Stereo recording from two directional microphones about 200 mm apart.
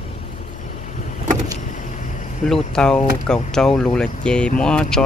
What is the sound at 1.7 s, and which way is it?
Vehicle, 40° left (ahead or behind).